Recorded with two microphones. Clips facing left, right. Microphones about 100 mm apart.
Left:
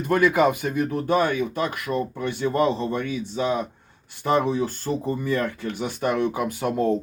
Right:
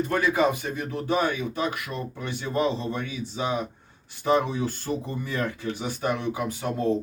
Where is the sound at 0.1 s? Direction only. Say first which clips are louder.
Left 7 dB; 55° left (ahead or behind).